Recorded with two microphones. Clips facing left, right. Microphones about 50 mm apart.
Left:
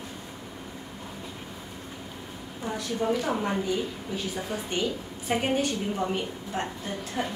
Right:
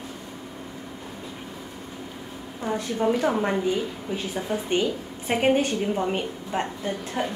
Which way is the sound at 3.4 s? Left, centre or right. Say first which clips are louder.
Right 4 dB; right.